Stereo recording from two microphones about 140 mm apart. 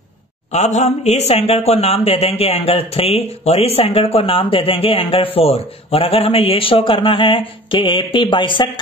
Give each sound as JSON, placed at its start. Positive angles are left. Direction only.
{"t": 0.5, "sound": "speech", "side_deg": 55}